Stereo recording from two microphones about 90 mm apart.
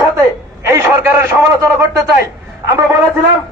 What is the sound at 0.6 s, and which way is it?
Speech, 30° right (ahead or behind).